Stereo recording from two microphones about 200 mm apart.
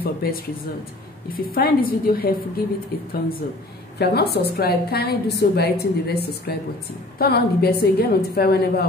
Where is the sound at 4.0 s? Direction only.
55° left (ahead or behind).